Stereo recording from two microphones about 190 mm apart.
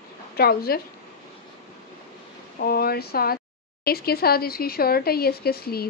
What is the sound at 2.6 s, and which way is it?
Speech, 55° left (ahead or behind).